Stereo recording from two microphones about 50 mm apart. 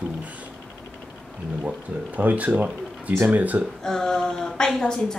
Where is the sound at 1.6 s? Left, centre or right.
Right.